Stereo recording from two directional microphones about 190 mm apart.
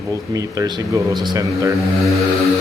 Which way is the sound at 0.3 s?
20° right (ahead or behind).